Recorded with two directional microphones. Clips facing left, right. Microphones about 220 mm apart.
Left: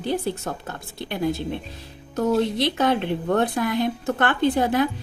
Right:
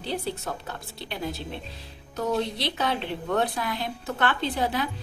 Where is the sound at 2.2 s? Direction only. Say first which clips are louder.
Left 6 dB; 50° left (ahead or behind).